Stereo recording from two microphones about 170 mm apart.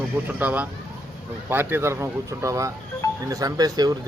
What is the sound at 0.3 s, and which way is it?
Speech, 10° right (ahead or behind).